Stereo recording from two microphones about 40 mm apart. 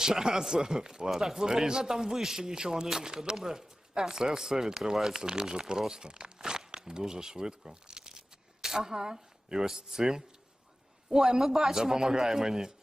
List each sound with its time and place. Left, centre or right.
0.0 s speech: centre